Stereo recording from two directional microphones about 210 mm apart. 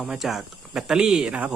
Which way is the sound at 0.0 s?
Centre (ahead or behind).